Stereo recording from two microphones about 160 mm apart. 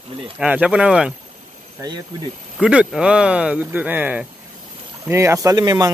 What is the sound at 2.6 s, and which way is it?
Speech, 5° right (ahead or behind).